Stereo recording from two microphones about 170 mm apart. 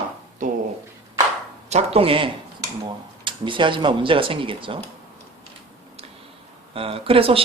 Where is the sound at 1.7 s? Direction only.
35° right (ahead or behind).